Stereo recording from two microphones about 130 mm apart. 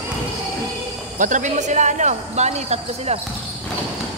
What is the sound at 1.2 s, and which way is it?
A woman's voice, 75° right (ahead or behind).